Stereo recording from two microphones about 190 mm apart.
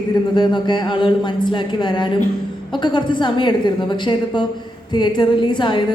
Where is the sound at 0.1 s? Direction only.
25° left (ahead or behind).